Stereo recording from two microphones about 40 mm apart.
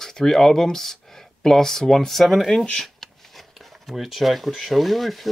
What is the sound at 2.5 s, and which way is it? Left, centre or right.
Speech, centre.